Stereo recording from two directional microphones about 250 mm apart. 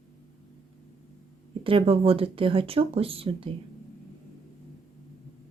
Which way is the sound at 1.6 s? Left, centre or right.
Right.